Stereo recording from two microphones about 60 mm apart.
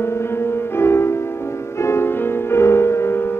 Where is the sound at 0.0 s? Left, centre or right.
Left.